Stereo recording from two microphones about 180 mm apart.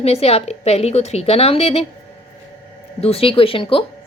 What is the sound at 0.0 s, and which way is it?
A woman's voice, 35° left (ahead or behind).